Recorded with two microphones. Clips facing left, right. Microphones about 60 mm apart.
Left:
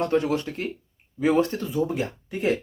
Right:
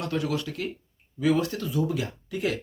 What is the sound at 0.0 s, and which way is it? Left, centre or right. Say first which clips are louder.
Speech: left 5 dB; left.